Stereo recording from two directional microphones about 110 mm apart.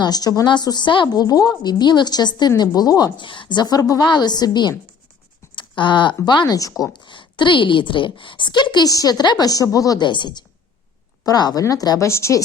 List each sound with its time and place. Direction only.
0.0 s a woman's voice: 35° left (ahead or behind)
5.5 s a sound: 45° left (ahead or behind)
6.2 s a woman's voice: 40° left (ahead or behind)
6.9 s a woman's voice: 45° left (ahead or behind); by 12.4 s 25° left (ahead or behind)